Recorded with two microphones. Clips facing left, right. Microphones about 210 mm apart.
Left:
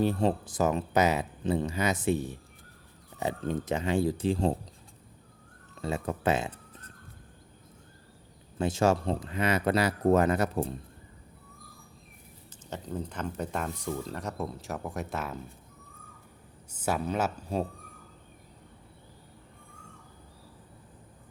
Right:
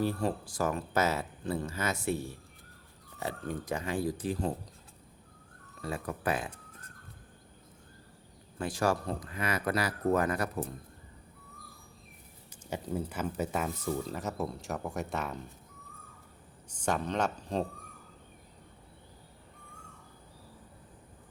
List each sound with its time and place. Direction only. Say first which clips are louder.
0.0 s speech: left 5 dB; 20° left (ahead or behind)
5.8 s speech: left 5 dB; 25° left (ahead or behind)
8.5 s speech: left 5 dB; 25° left (ahead or behind)
12.7 s speech: right 1 dB; 10° right (ahead or behind)
16.6 s speech: left 2 dB; 5° left (ahead or behind)